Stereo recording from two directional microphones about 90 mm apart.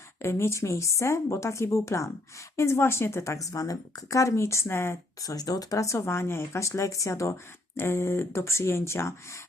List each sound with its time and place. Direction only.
0.2 s a woman's voice: 30° left (ahead or behind)
5.2 s a woman's voice: 45° left (ahead or behind)